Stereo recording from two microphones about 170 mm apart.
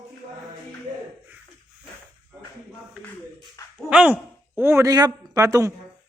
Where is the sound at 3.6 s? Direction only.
20° left (ahead or behind).